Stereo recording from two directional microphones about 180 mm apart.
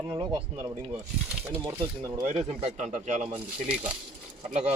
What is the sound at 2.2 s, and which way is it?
Speech, 40° right (ahead or behind).